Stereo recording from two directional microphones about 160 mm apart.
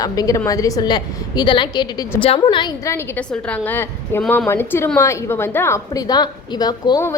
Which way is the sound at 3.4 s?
10° left (ahead or behind).